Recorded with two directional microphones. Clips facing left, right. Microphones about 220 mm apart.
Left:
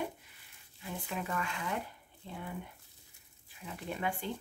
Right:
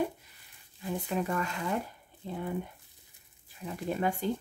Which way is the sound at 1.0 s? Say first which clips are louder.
Right 5 dB; 40° right (ahead or behind).